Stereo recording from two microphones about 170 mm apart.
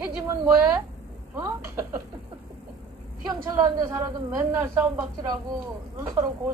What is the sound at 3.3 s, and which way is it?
A woman's voice, 10° right (ahead or behind).